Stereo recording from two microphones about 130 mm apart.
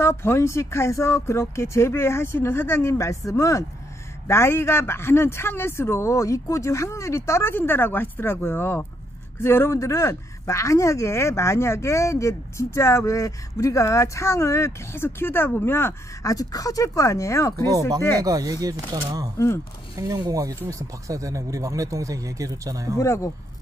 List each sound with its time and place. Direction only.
0.0 s speech: 20° left (ahead or behind)
18.2 s speech: 25° right (ahead or behind)
19.3 s speech: 20° left (ahead or behind)
20.0 s speech: 30° right (ahead or behind)
22.9 s speech: 20° left (ahead or behind)